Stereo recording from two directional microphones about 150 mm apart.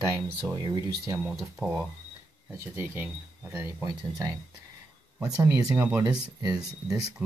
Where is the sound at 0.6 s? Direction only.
30° right (ahead or behind).